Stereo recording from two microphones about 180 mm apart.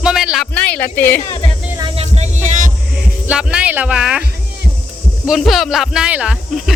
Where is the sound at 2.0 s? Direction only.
40° right (ahead or behind).